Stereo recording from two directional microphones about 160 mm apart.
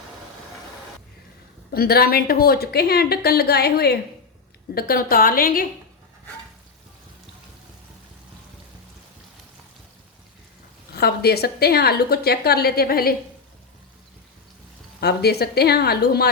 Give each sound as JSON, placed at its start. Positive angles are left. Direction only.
{"t": 1.7, "sound": "a woman's voice", "side_deg": 75}
{"t": 4.7, "sound": "a woman's voice", "side_deg": 70}
{"t": 10.9, "sound": "a woman's voice", "side_deg": 75}
{"t": 15.0, "sound": "a woman's voice", "side_deg": 85}